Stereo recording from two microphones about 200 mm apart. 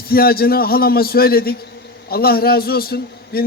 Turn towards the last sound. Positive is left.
turn(degrees=50)  # may be behind; listen again after turning